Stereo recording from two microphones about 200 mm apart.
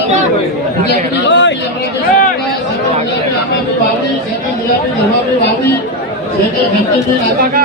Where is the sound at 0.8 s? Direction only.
60° left (ahead or behind).